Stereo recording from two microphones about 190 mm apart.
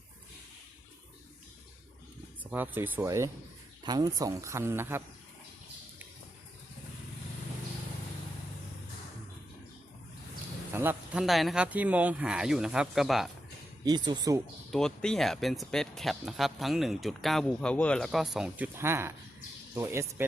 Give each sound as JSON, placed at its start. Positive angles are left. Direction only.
{"t": 2.4, "sound": "speech", "side_deg": -10}
{"t": 10.8, "sound": "speech", "side_deg": -10}
{"t": 13.8, "sound": "speech", "side_deg": -20}
{"t": 14.7, "sound": "speech", "side_deg": 5}